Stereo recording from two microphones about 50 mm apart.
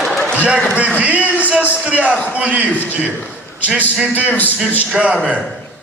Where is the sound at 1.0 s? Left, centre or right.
Right.